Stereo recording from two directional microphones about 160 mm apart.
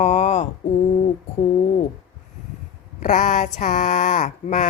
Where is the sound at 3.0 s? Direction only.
50° left (ahead or behind).